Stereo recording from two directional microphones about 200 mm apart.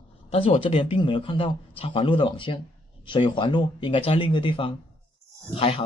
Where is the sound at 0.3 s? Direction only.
30° left (ahead or behind).